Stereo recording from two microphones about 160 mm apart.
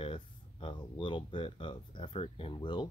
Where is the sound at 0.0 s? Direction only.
35° left (ahead or behind).